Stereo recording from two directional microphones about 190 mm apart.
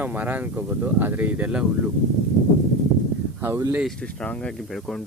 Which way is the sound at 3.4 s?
15° right (ahead or behind).